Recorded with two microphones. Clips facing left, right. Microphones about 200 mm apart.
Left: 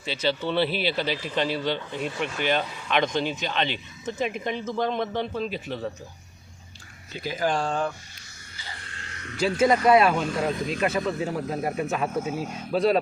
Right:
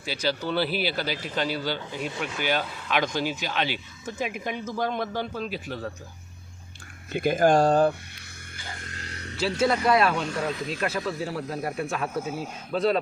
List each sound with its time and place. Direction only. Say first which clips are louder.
0.0 s speech: left 2 dB; 5° right (ahead or behind)
7.1 s speech: right 6 dB; 50° right (ahead or behind)
8.5 s a sound: right 3 dB; 50° right (ahead or behind)
9.6 s speech: left 3 dB; 10° left (ahead or behind)